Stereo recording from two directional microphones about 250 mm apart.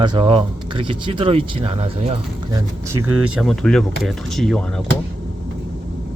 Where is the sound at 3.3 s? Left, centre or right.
Centre.